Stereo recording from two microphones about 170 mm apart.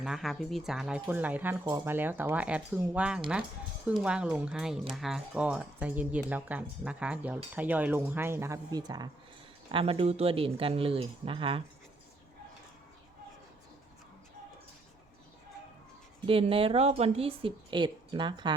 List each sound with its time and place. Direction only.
0.0 s speech: centre (ahead or behind); by 11.6 s 30° right (ahead or behind)
16.2 s speech: 35° right (ahead or behind)